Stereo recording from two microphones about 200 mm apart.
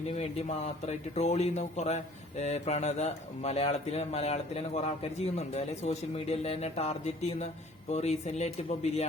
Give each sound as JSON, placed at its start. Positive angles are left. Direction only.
{"t": 0.2, "sound": "speech", "side_deg": 35}